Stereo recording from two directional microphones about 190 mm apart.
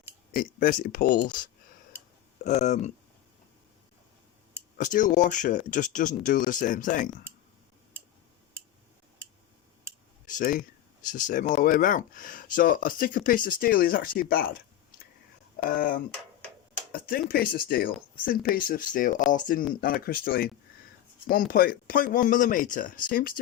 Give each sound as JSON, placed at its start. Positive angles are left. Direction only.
{"t": 0.3, "sound": "speech", "side_deg": 45}
{"t": 2.4, "sound": "speech", "side_deg": 35}
{"t": 4.8, "sound": "speech", "side_deg": 45}
{"t": 9.9, "sound": "a sound", "side_deg": -15}
{"t": 10.2, "sound": "speech", "side_deg": 45}
{"t": 15.7, "sound": "speech", "side_deg": 45}